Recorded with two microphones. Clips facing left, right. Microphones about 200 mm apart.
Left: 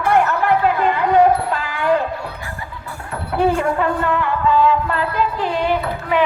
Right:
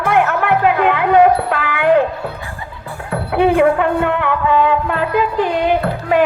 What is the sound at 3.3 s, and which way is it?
Music, 60° right (ahead or behind).